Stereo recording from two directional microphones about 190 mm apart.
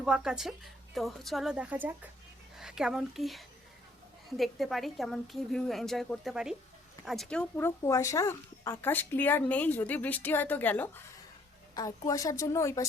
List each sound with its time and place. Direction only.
0.0 s a woman's voice: 5° right (ahead or behind); by 12.9 s 15° left (ahead or behind)